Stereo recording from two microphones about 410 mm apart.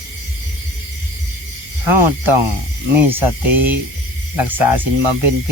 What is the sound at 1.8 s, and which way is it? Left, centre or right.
Speech, right.